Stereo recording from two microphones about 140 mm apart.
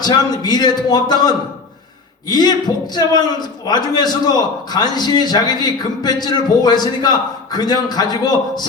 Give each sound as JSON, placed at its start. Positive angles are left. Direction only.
{"t": 0.0, "sound": "a man's voice", "side_deg": 30}